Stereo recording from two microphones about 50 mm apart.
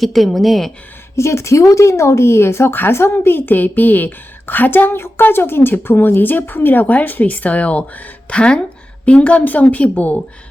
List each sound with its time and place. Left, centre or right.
0.0 s a woman's voice: centre
1.1 s a woman's voice: left